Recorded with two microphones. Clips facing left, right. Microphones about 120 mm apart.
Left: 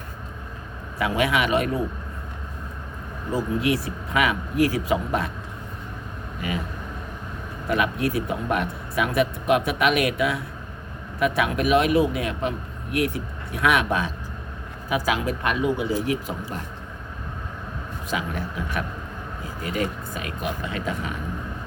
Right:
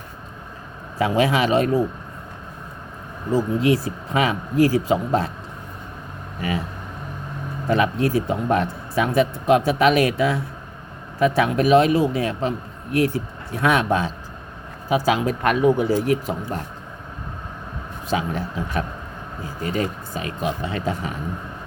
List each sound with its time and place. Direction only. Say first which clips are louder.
0.9 s a man's voice: right 4 dB; 30° right (ahead or behind)
3.3 s a man's voice: right 4 dB; 30° right (ahead or behind)
7.7 s a man's voice: right 4 dB; 30° right (ahead or behind)
18.1 s a man's voice: right 5 dB; 30° right (ahead or behind)